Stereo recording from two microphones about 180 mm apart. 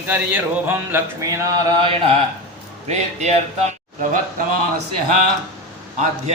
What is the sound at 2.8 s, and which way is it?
Speech, 40° right (ahead or behind).